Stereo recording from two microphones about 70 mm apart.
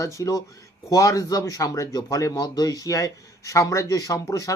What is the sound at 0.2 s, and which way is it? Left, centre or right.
Speech, left.